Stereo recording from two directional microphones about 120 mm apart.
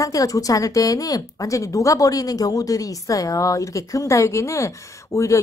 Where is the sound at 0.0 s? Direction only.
30° left (ahead or behind).